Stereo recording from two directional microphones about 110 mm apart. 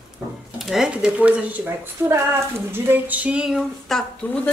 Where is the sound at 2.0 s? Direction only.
25° right (ahead or behind).